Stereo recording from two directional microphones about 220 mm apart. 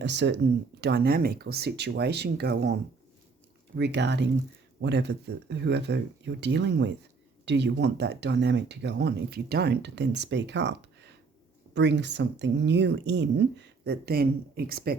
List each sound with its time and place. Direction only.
0.0 s speech: 50° right (ahead or behind)
3.8 s speech: 50° right (ahead or behind)